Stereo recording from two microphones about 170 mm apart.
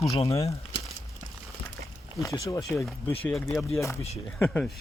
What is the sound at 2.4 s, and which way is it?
Speech, 20° left (ahead or behind).